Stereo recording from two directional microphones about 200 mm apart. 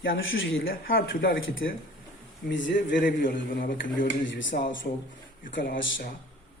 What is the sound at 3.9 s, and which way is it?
Speech, 70° left (ahead or behind).